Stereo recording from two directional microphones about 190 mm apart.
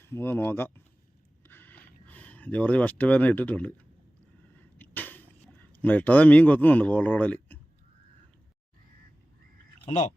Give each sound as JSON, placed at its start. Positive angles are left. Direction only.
{"t": 0.0, "sound": "speech", "side_deg": 10}
{"t": 1.5, "sound": "a sound", "side_deg": 10}
{"t": 5.8, "sound": "speech", "side_deg": 10}
{"t": 9.7, "sound": "speech", "side_deg": 35}